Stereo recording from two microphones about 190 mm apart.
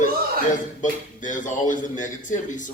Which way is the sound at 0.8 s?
40° left (ahead or behind).